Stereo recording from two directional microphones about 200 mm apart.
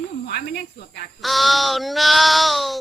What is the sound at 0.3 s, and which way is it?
Speech, 55° left (ahead or behind).